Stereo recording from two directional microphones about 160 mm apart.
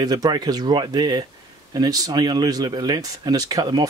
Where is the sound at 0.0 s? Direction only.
25° right (ahead or behind).